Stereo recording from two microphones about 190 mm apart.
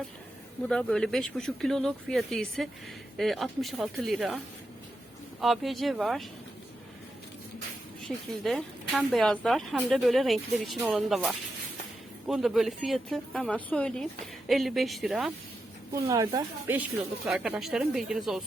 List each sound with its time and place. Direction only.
0.7 s speech: 5° left (ahead or behind)
5.4 s speech: centre (ahead or behind)
8.0 s speech: centre (ahead or behind)
15.9 s speech: 15° right (ahead or behind)